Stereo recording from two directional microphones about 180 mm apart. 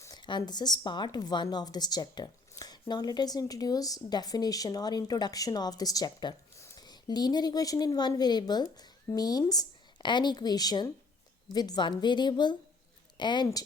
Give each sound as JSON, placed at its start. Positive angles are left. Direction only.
{"t": 0.0, "sound": "a woman's voice", "side_deg": 25}